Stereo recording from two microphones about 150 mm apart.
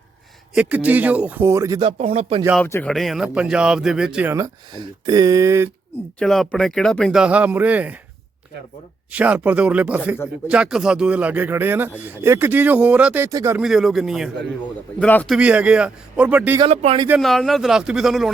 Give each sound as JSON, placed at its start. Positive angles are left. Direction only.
{"t": 0.5, "sound": "speech", "side_deg": -10}
{"t": 1.8, "sound": "speech", "side_deg": -40}
{"t": 2.8, "sound": "speech", "side_deg": 0}
{"t": 4.8, "sound": "speech", "side_deg": -30}
{"t": 6.1, "sound": "speech", "side_deg": 0}
{"t": 9.1, "sound": "speech", "side_deg": -10}
{"t": 13.6, "sound": "speech", "side_deg": 0}
{"t": 14.9, "sound": "a man's voice", "side_deg": 10}
{"t": 15.4, "sound": "speech", "side_deg": -10}
{"t": 16.6, "sound": "speech", "side_deg": -45}
{"t": 17.2, "sound": "speech", "side_deg": 0}